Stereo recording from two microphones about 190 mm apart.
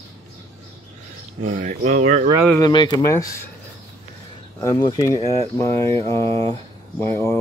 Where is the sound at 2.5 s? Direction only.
20° left (ahead or behind).